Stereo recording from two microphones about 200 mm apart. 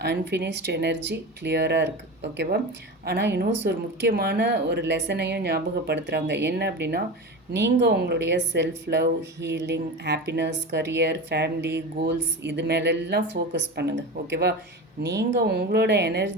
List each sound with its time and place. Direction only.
0.0 s speech: 60° right (ahead or behind)